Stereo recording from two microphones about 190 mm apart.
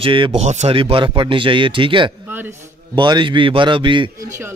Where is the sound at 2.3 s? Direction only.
10° right (ahead or behind).